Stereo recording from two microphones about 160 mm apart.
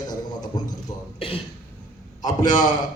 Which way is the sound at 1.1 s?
35° left (ahead or behind).